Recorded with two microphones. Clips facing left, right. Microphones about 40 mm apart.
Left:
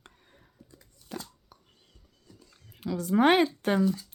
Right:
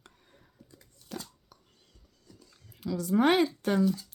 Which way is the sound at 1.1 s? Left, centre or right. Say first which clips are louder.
Left 1 dB; left.